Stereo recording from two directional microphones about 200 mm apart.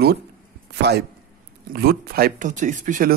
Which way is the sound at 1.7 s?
50° right (ahead or behind).